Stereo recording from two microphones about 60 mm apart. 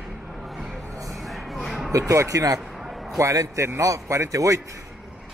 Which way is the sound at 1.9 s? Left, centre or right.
Right.